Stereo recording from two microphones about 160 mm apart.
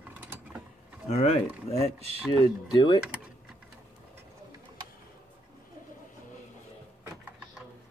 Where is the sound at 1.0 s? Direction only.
45° left (ahead or behind).